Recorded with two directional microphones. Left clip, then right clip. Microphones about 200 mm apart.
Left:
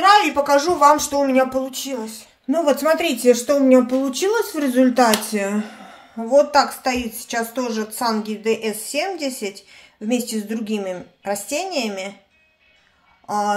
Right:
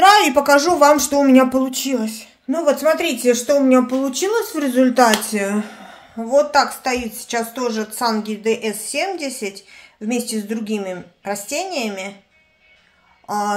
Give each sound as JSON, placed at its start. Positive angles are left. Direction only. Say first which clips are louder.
{"t": 0.0, "sound": "a sound", "louder": "right 3 dB", "side_deg": -65}
{"t": 0.7, "sound": "speech", "louder": "right 1 dB", "side_deg": -40}
{"t": 2.5, "sound": "speech", "louder": "right 1 dB", "side_deg": 5}
{"t": 13.3, "sound": "speech", "louder": "even", "side_deg": 0}